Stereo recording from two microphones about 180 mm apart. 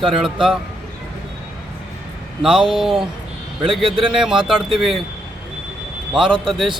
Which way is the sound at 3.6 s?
30° right (ahead or behind).